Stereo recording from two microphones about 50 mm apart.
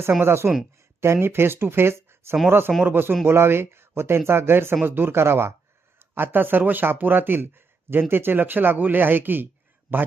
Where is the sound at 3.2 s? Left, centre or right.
Right.